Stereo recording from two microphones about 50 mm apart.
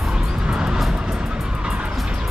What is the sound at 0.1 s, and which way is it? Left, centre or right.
Vehicle, centre.